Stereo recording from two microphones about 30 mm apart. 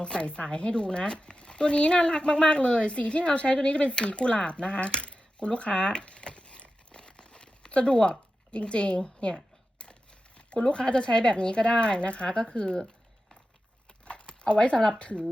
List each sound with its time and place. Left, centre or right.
0.0 s a woman's voice: left
14.0 s a sound: left
14.9 s a woman's voice: left